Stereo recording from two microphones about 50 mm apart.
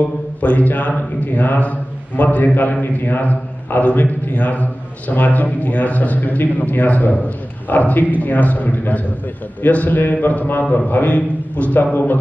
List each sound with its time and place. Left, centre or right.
0.0 s a man's voice: left